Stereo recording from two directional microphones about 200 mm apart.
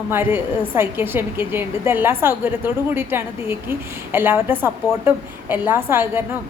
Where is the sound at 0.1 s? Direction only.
10° right (ahead or behind).